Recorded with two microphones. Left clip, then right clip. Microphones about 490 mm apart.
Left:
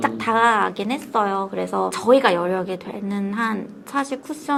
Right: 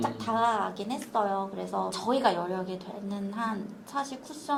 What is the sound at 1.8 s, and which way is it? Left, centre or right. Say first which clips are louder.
Speech: left 9 dB; left.